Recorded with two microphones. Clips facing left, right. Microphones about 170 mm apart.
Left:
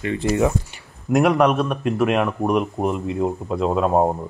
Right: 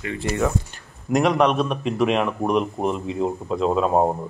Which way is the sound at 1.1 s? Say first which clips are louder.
Left 2 dB; 5° left (ahead or behind).